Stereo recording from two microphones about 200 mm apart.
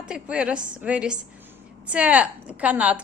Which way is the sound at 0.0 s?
5° right (ahead or behind).